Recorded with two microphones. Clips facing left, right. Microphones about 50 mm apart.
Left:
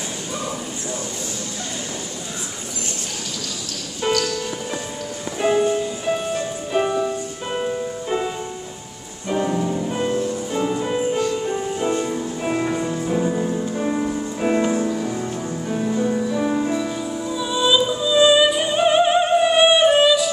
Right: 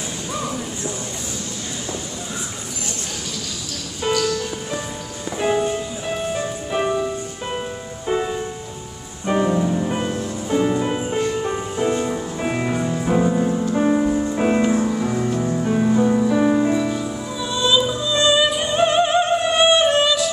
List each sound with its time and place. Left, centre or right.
4.1 s music: centre
5.4 s music: centre
9.3 s music: centre
9.8 s music: right
12.0 s music: centre
13.0 s music: right
13.8 s music: centre
15.0 s music: right
16.4 s music: centre
17.4 s music: centre